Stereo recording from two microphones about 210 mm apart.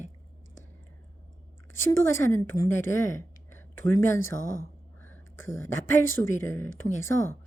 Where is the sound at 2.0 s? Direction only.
10° left (ahead or behind).